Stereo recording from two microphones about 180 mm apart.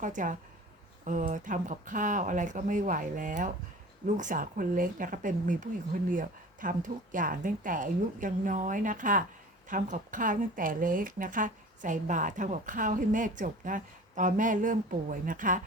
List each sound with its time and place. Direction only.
0.0 s a woman's voice: 45° right (ahead or behind)